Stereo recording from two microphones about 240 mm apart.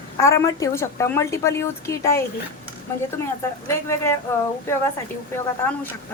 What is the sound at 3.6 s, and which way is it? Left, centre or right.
Speech, centre.